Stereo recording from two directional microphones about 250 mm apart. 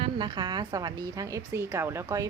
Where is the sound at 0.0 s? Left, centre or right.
Centre.